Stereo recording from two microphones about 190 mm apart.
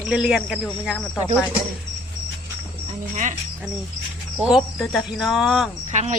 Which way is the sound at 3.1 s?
40° right (ahead or behind).